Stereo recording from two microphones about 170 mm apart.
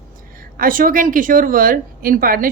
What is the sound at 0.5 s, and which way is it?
A woman's voice, 55° right (ahead or behind).